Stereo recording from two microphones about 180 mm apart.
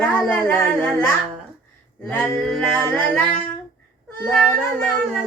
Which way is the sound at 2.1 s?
5° left (ahead or behind).